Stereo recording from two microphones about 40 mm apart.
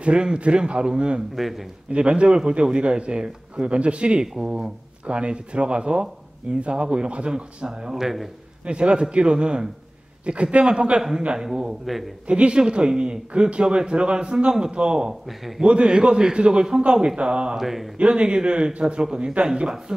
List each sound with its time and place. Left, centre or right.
0.0 s a man's voice: right
1.3 s a man's voice: centre
1.9 s a man's voice: right
7.9 s a man's voice: centre
8.6 s a man's voice: right
11.0 s speech: centre
11.8 s a man's voice: centre
12.3 s a man's voice: right
15.2 s a man's voice: centre
15.6 s a man's voice: right
17.6 s speech: centre
17.9 s a man's voice: right